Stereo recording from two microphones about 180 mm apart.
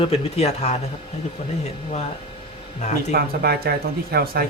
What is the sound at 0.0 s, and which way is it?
Speech, 35° left (ahead or behind).